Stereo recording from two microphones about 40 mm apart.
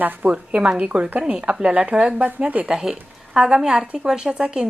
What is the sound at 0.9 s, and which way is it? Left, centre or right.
Speech, centre.